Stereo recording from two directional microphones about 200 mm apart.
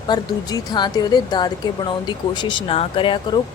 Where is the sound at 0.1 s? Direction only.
20° left (ahead or behind).